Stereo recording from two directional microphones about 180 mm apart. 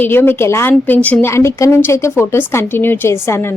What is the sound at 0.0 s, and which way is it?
Speech, 10° left (ahead or behind).